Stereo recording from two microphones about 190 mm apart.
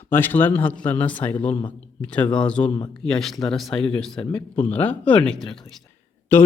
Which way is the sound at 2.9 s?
5° left (ahead or behind).